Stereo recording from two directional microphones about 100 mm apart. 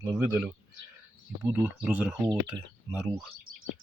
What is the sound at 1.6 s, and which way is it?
Speech, 15° right (ahead or behind).